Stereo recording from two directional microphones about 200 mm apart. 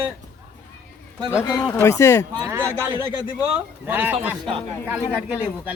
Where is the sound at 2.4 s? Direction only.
15° right (ahead or behind).